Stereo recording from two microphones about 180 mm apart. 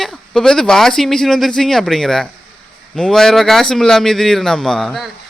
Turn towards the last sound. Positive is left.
turn(degrees=0)  # may be behind; listen again after turning